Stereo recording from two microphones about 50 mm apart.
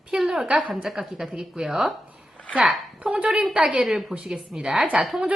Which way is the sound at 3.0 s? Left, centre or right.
Centre.